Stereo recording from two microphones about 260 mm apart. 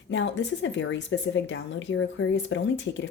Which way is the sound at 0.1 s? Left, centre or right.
Left.